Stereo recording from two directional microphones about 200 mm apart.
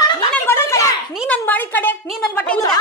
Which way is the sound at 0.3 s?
10° left (ahead or behind).